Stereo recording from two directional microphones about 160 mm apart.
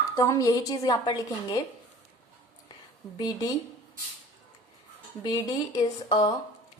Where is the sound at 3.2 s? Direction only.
25° left (ahead or behind).